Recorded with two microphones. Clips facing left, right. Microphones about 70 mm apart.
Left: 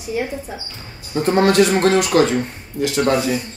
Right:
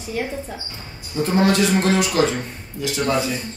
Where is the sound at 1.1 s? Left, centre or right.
Left.